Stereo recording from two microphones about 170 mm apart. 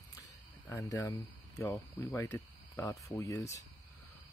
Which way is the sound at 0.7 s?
15° left (ahead or behind).